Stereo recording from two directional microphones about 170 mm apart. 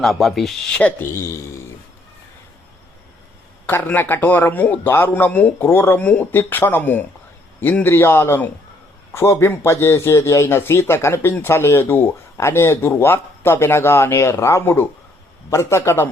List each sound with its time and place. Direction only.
0.0 s a man's voice: centre (ahead or behind)
3.7 s a man's voice: 10° left (ahead or behind)